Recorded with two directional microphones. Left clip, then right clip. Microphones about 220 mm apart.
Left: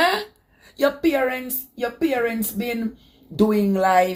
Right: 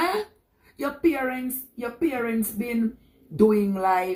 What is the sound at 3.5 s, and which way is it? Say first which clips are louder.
Speech: left 3 dB; 45° left (ahead or behind).